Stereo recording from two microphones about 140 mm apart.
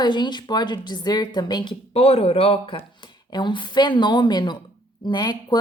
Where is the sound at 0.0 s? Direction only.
30° left (ahead or behind).